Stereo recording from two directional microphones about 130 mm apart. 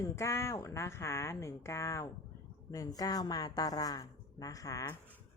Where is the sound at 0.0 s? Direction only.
25° left (ahead or behind).